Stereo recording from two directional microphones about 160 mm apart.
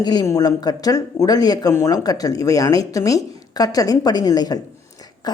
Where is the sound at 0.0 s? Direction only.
25° left (ahead or behind).